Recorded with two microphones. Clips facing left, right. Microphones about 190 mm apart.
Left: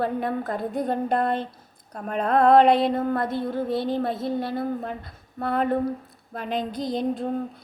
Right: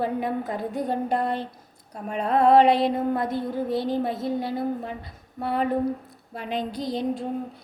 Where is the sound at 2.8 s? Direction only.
15° right (ahead or behind).